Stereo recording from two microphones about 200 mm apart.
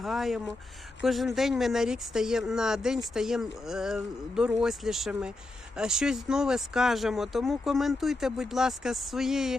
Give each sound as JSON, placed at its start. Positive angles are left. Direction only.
{"t": 0.0, "sound": "speech", "side_deg": 0}